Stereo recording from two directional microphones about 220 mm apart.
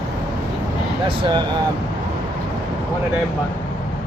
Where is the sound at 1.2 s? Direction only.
20° right (ahead or behind).